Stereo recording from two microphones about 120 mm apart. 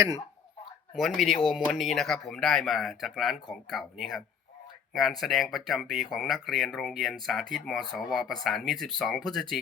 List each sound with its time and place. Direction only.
0.9 s speech: centre (ahead or behind)
5.2 s speech: centre (ahead or behind)